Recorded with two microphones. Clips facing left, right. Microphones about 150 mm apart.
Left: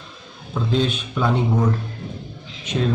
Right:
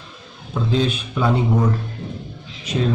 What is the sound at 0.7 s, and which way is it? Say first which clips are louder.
Speech: right 1 dB; 5° right (ahead or behind).